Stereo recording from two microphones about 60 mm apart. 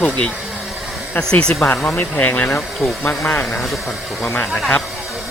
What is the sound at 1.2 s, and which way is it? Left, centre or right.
Speech, centre.